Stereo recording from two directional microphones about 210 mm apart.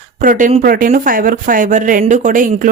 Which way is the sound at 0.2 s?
40° right (ahead or behind).